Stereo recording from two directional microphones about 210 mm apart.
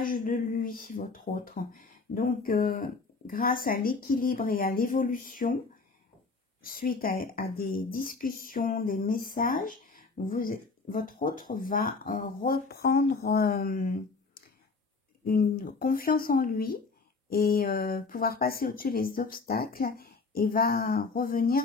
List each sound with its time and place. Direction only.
0.0 s speech: 40° left (ahead or behind)
6.6 s speech: 45° left (ahead or behind)